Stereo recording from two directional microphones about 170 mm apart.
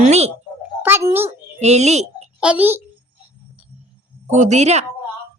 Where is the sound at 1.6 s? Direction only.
40° right (ahead or behind).